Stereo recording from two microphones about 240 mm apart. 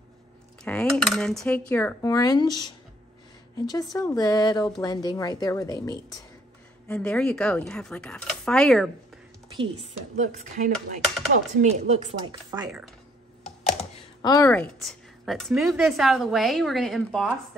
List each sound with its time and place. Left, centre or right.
0.7 s speech: centre
6.9 s speech: centre
9.6 s a woman's voice: right
13.7 s speech: left; by 17.3 s centre